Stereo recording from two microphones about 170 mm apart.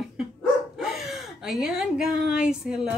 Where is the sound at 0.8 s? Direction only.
Centre (ahead or behind).